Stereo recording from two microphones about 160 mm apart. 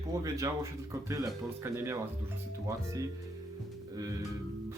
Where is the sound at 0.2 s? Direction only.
20° right (ahead or behind).